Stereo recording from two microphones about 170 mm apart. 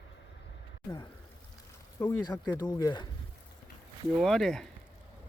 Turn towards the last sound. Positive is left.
turn(degrees=5)  # may be behind; listen again after turning